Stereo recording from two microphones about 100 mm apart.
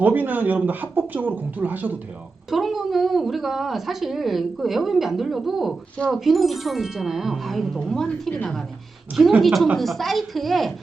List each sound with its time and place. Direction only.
0.0 s speech: 20° right (ahead or behind)
2.5 s a woman's voice: centre (ahead or behind)